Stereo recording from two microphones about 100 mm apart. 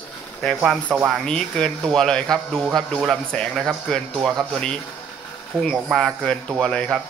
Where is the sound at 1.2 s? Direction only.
5° left (ahead or behind).